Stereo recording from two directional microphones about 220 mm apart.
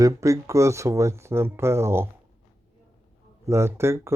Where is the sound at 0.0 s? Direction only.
15° right (ahead or behind).